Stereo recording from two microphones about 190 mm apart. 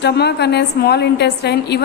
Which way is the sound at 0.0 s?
60° left (ahead or behind).